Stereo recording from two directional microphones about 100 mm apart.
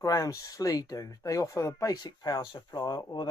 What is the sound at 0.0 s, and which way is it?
Speech, 35° left (ahead or behind).